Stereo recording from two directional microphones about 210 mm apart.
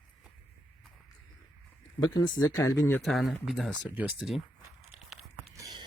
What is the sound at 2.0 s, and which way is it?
Speech, 20° left (ahead or behind).